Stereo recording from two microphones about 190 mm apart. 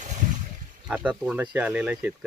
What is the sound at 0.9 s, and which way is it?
Speech, 5° right (ahead or behind).